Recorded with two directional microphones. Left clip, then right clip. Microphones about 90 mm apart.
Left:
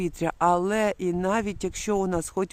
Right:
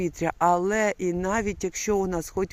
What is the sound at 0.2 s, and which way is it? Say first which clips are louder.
Speech: even; 35° left (ahead or behind).